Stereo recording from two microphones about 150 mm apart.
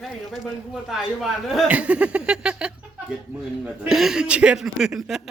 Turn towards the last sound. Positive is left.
turn(degrees=0)  # may be behind; listen again after turning